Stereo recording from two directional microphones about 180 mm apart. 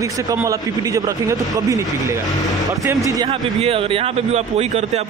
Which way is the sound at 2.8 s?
20° right (ahead or behind).